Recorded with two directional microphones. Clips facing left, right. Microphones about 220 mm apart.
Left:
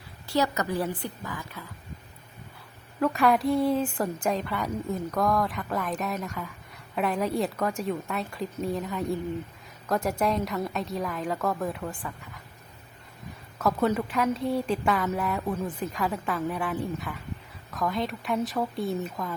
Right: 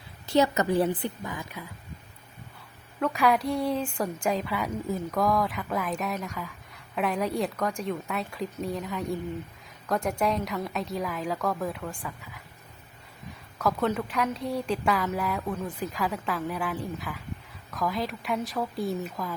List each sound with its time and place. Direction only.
0.3 s a woman's voice: 20° right (ahead or behind)
3.0 s a woman's voice: centre (ahead or behind)
13.6 s a woman's voice: 5° left (ahead or behind)